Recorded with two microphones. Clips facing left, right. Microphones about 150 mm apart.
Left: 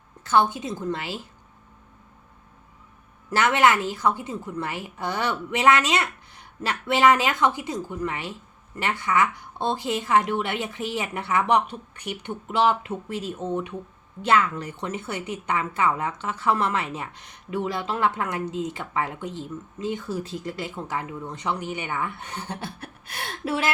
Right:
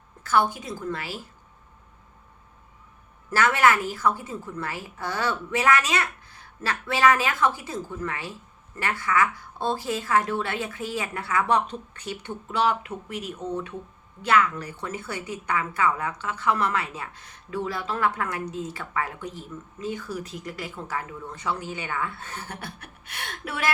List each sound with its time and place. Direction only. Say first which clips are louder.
0.2 s a woman's voice: left 2 dB; 20° left (ahead or behind)
3.2 s a woman's voice: left 1 dB; 20° left (ahead or behind)
23.0 s a woman's voice: left 6 dB; 35° left (ahead or behind)